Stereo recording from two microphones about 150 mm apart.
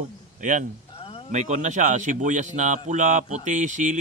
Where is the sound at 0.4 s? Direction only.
60° right (ahead or behind).